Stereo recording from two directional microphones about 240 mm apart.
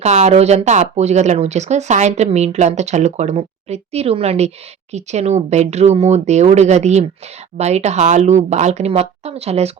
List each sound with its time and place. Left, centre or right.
0.0 s speech: right